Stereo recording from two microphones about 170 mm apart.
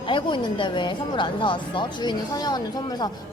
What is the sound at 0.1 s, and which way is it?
Speech, 30° left (ahead or behind).